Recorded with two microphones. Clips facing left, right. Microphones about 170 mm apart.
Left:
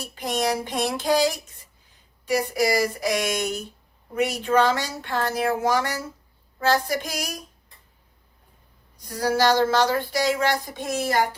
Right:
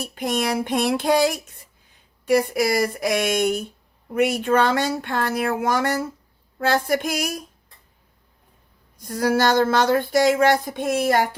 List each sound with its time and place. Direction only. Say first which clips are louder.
0.0 s speech: right 2 dB; 55° right (ahead or behind)
9.0 s speech: right 2 dB; 50° right (ahead or behind)